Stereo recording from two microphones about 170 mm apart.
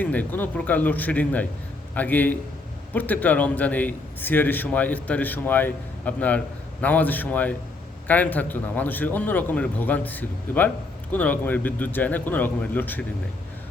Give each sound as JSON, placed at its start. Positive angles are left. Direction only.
{"t": 0.0, "sound": "a man's voice", "side_deg": 10}